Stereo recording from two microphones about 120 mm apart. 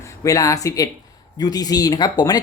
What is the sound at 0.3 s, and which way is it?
Speech, 25° left (ahead or behind).